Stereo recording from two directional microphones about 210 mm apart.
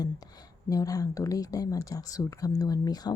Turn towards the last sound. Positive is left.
turn(degrees=20)  # may be behind; listen again after turning